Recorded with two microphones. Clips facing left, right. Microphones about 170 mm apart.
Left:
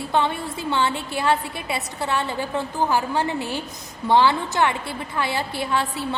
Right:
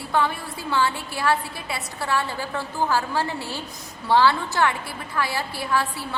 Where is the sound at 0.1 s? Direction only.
25° left (ahead or behind).